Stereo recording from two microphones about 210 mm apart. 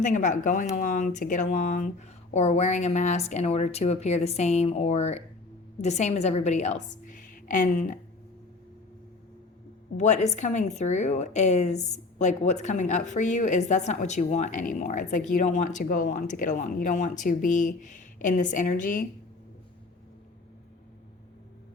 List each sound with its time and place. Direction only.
0.0 s speech: 35° left (ahead or behind)
7.0 s a sound: 40° left (ahead or behind)
10.0 s speech: 35° left (ahead or behind)